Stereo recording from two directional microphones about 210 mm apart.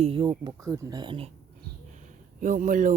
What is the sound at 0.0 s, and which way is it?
Speech, 25° right (ahead or behind).